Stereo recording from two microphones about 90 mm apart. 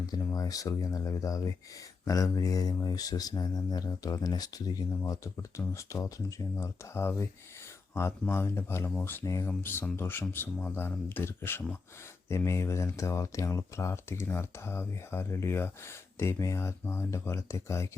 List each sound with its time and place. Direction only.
0.3 s speech: 40° left (ahead or behind)
8.3 s speech: 25° left (ahead or behind)